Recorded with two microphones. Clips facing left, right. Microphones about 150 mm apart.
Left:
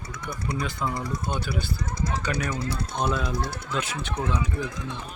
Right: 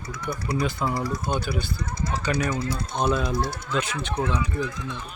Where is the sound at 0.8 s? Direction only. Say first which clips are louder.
Right 3 dB; 10° right (ahead or behind).